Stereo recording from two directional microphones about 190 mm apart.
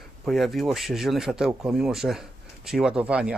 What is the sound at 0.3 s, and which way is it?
Speech, centre (ahead or behind).